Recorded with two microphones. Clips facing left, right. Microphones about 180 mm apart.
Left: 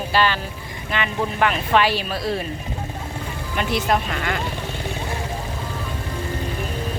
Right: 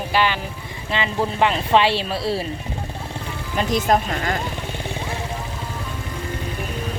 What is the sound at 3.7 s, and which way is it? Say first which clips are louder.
Speech: right 3 dB; 40° right (ahead or behind).